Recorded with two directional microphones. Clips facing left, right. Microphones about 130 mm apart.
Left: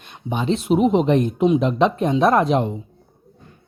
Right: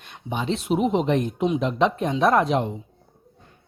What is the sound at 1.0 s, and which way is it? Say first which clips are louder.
Speech: left 5 dB; 25° left (ahead or behind).